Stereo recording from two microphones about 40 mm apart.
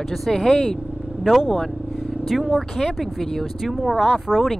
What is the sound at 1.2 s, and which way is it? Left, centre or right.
Speech, centre.